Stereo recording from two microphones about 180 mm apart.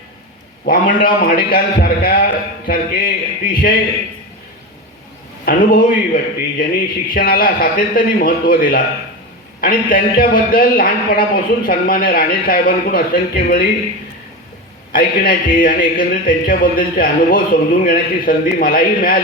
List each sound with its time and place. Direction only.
0.6 s a man's voice: 50° left (ahead or behind)
5.5 s a man's voice: 50° left (ahead or behind)
14.9 s a man's voice: 50° left (ahead or behind)